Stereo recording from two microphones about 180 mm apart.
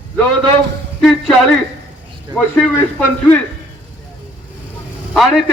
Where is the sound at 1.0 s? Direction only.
Centre (ahead or behind).